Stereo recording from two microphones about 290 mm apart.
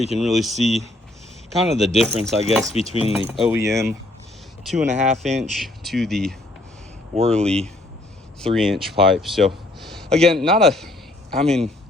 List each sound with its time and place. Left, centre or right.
0.2 s speech: centre
2.7 s speech: centre
3.0 s speech: centre
4.9 s speech: right
5.4 s speech: centre
7.1 s speech: right
7.4 s a man's voice: centre